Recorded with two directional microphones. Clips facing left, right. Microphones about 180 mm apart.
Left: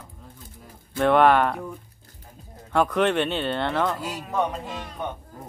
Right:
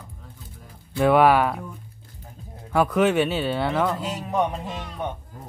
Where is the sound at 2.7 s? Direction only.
5° right (ahead or behind).